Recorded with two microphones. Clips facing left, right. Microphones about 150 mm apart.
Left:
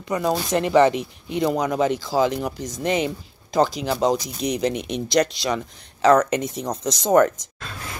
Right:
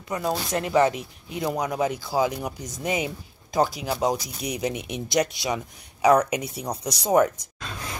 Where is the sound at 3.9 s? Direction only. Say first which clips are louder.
Left 4 dB; 10° right (ahead or behind).